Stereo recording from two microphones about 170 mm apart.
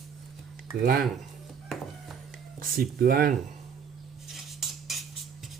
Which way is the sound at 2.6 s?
60° right (ahead or behind).